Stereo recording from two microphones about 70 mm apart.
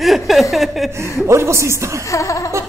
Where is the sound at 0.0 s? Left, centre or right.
Centre.